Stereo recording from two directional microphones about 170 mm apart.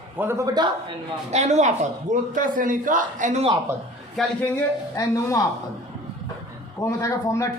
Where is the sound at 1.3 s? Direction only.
40° right (ahead or behind).